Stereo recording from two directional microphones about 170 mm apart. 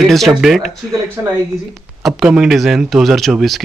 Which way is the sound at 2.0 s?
Centre (ahead or behind).